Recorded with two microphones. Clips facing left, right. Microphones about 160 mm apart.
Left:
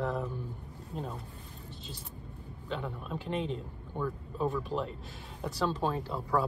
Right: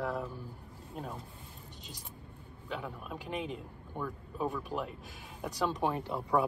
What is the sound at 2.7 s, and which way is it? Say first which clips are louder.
A man's voice: left 3 dB; 10° right (ahead or behind).